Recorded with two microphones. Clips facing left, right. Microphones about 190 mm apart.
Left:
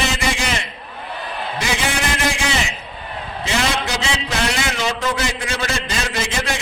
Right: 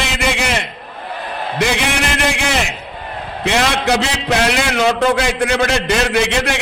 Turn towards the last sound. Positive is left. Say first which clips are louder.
# right 7 dB
turn(degrees=-65)  # may be behind; listen again after turning